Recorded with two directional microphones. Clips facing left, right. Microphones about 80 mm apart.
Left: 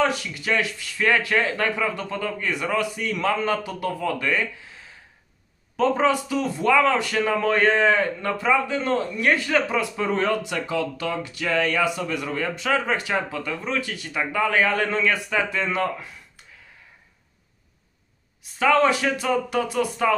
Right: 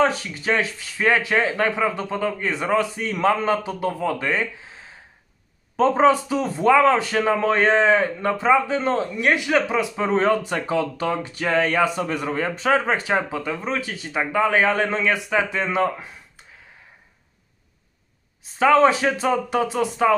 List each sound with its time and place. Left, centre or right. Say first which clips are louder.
0.0 s a man's voice: right 3 dB; right
18.4 s a man's voice: right 3 dB; right